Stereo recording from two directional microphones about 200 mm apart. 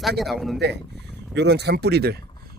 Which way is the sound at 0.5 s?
55° right (ahead or behind).